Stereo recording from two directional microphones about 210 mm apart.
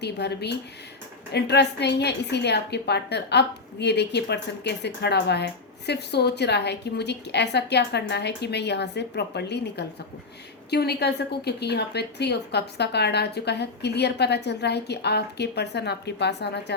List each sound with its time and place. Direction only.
0.0 s a woman's voice: 50° left (ahead or behind)